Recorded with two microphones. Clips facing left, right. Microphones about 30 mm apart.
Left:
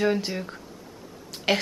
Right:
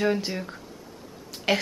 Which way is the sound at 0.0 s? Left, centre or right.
Centre.